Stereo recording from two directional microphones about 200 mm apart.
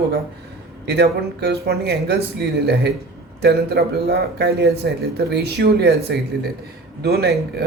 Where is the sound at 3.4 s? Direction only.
55° right (ahead or behind).